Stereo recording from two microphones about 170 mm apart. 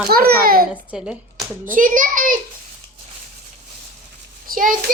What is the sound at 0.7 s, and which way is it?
Speech, 5° right (ahead or behind).